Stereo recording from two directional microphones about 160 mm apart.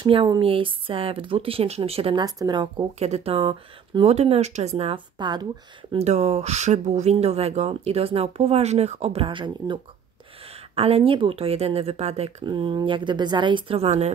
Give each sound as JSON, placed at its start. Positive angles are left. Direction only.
{"t": 0.0, "sound": "speech", "side_deg": -30}
{"t": 2.2, "sound": "speech", "side_deg": -25}
{"t": 3.0, "sound": "speech", "side_deg": -40}
{"t": 5.9, "sound": "speech", "side_deg": -45}
{"t": 10.8, "sound": "speech", "side_deg": -35}